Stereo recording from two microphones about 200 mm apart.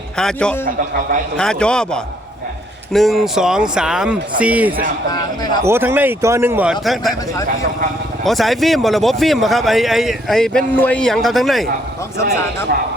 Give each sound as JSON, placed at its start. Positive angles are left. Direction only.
{"t": 0.2, "sound": "a man's voice", "side_deg": 5}
{"t": 0.6, "sound": "a man's voice", "side_deg": -45}
{"t": 1.4, "sound": "a man's voice", "side_deg": 5}
{"t": 5.1, "sound": "a man's voice", "side_deg": 20}
{"t": 5.6, "sound": "a man's voice", "side_deg": -10}
{"t": 8.2, "sound": "a man's voice", "side_deg": 0}